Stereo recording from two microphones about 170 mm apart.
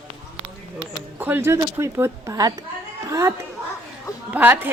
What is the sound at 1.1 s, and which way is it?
Speech, 10° right (ahead or behind).